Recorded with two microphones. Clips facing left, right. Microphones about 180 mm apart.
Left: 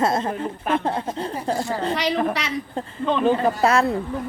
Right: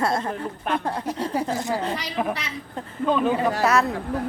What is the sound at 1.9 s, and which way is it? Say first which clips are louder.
Speech: left 8 dB; 75° left (ahead or behind).